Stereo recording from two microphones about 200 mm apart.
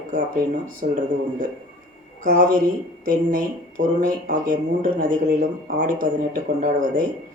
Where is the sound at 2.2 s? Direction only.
40° right (ahead or behind).